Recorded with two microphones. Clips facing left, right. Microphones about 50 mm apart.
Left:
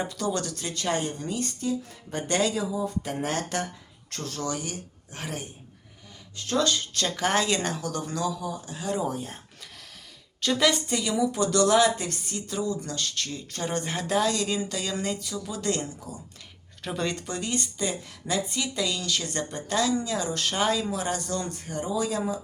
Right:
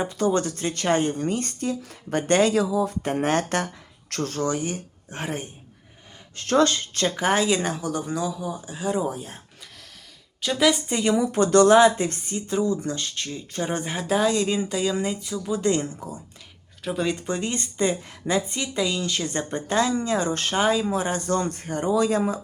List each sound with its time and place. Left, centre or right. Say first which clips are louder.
0.1 s speech: right 6 dB; right
2.6 s speech: right 6 dB; right
3.0 s speech: right 7 dB; right
4.2 s speech: right 6 dB; right
6.3 s speech: right 6 dB; right
7.2 s speech: right 3 dB; centre
10.4 s speech: right 3 dB; centre
11.0 s speech: right 6 dB; right; by 15.2 s centre
15.2 s speech: right 7 dB; right
16.8 s speech: right 4 dB; centre
17.2 s speech: right 3 dB; right
20.6 s speech: right 5 dB; right
21.2 s speech: right 7 dB; right